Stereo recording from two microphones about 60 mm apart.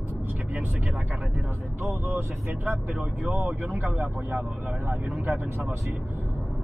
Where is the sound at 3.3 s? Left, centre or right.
Right.